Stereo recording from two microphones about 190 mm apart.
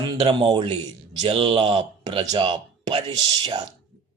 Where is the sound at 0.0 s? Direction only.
25° right (ahead or behind).